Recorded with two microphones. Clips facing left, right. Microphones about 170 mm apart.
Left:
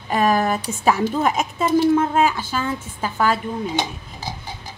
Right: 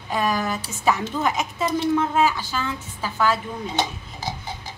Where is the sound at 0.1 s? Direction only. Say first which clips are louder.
Left 5 dB; 60° left (ahead or behind).